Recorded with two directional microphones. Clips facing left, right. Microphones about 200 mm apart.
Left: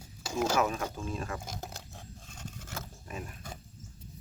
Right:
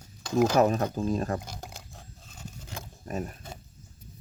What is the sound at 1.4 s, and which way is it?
Ratchet, centre (ahead or behind).